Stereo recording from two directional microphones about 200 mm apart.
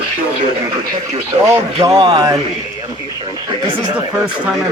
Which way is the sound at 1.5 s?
20° right (ahead or behind).